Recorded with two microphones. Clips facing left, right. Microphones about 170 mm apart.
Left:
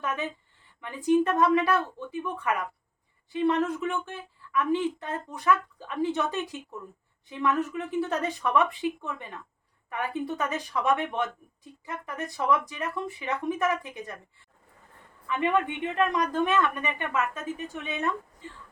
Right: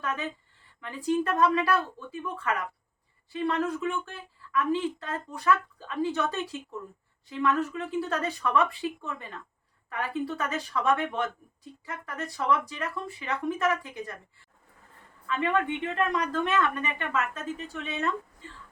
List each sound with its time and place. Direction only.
0.0 s a woman's voice: 20° left (ahead or behind)
15.3 s a woman's voice: 20° left (ahead or behind)